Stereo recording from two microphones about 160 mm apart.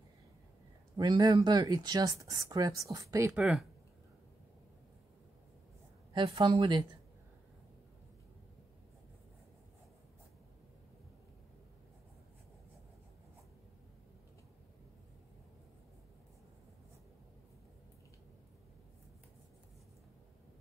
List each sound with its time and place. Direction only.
0.9 s speech: 25° right (ahead or behind)
3.3 s speech: 5° right (ahead or behind)
6.1 s a woman's voice: 30° right (ahead or behind)